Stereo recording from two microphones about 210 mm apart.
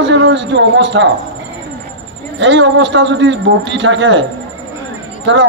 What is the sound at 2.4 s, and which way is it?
A man's voice, 60° right (ahead or behind).